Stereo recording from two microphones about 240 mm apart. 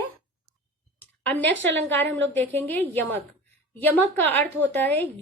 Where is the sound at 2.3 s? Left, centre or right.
Centre.